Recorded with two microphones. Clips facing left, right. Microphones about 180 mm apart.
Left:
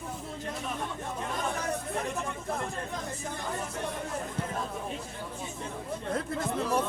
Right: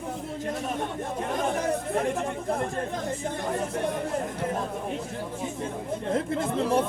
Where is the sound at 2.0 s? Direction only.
50° right (ahead or behind).